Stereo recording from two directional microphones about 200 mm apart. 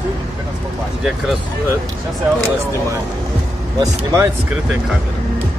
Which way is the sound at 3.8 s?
20° right (ahead or behind).